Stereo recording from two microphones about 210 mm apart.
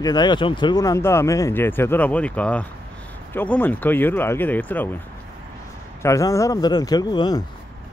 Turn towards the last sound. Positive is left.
turn(degrees=20)  # may be behind; listen again after turning